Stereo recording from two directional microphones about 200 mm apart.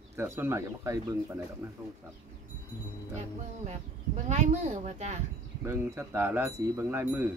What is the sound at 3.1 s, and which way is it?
Speech, 35° right (ahead or behind).